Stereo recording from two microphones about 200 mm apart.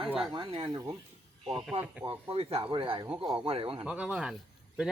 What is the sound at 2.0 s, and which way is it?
Speech, 25° right (ahead or behind).